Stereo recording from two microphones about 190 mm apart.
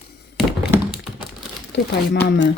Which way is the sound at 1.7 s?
65° left (ahead or behind).